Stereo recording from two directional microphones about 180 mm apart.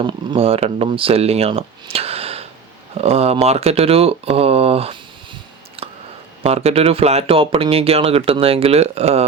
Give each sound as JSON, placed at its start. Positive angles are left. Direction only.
{"t": 0.0, "sound": "speech", "side_deg": -25}